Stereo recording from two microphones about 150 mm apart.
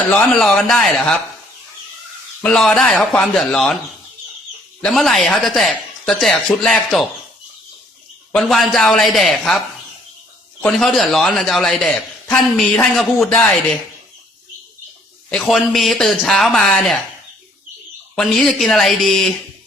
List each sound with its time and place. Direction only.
0.1 s a man's voice: 5° left (ahead or behind)
2.4 s a man's voice: 5° left (ahead or behind)
4.8 s a man's voice: centre (ahead or behind)
8.3 s a man's voice: centre (ahead or behind)
15.3 s a man's voice: centre (ahead or behind)
18.1 s a man's voice: centre (ahead or behind)